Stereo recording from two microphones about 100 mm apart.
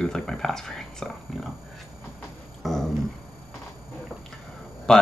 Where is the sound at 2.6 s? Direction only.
5° left (ahead or behind).